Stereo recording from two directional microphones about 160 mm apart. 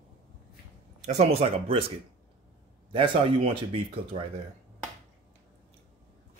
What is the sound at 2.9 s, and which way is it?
Speech, 30° right (ahead or behind).